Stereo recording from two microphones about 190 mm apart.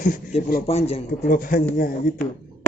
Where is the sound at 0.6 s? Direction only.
30° left (ahead or behind).